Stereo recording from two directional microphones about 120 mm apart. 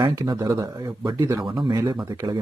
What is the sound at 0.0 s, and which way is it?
A man's voice, 35° right (ahead or behind).